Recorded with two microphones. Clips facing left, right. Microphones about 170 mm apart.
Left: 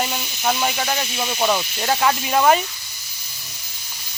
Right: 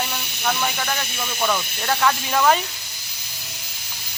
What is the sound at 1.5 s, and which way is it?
Speech, 15° left (ahead or behind).